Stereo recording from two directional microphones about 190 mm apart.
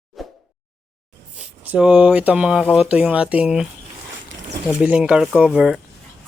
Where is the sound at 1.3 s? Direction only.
5° right (ahead or behind).